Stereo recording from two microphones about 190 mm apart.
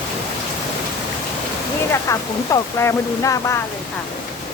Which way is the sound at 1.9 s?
15° left (ahead or behind).